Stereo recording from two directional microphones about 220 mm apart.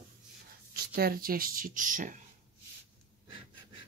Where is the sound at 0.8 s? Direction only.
40° right (ahead or behind).